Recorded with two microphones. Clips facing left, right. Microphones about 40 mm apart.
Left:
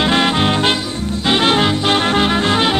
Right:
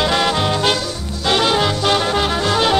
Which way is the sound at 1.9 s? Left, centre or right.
Left.